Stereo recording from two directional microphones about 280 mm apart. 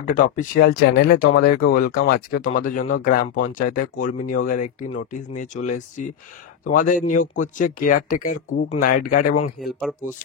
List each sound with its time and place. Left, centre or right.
0.0 s speech: left